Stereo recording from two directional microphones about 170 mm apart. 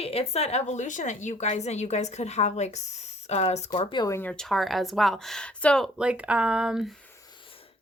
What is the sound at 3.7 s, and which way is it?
Speech, 25° left (ahead or behind).